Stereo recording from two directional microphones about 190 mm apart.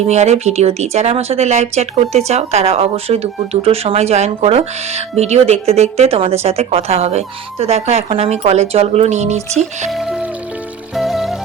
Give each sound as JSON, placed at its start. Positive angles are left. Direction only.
{"t": 0.1, "sound": "speech", "side_deg": -35}
{"t": 9.9, "sound": "music", "side_deg": 0}